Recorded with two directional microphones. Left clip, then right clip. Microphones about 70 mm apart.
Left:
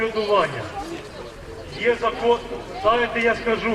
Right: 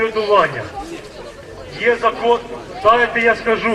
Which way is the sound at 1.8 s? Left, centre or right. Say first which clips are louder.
Right 5 dB; right.